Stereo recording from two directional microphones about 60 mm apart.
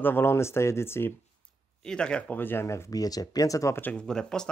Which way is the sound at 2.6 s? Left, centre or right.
Left.